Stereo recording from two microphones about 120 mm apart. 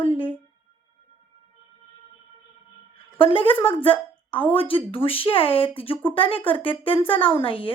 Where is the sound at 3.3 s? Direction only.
45° left (ahead or behind).